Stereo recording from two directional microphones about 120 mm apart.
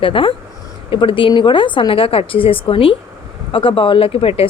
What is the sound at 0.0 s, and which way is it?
Speech, 45° left (ahead or behind).